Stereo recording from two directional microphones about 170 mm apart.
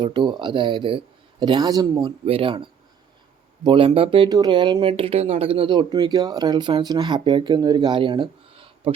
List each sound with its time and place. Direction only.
0.0 s speech: 30° right (ahead or behind)